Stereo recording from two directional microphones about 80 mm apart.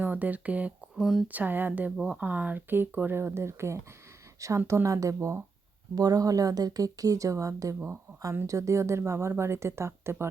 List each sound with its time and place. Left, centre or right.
0.0 s speech: right
0.9 s speech: centre
1.3 s speech: right
5.9 s speech: right